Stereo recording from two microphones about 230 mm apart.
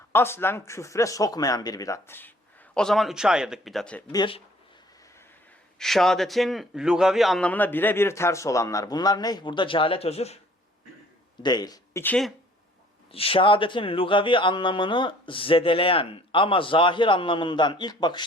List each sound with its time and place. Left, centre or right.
0.1 s a man's voice: centre
4.1 s speech: left
5.8 s a man's voice: centre; by 10.4 s left
11.4 s a man's voice: centre
13.1 s speech: left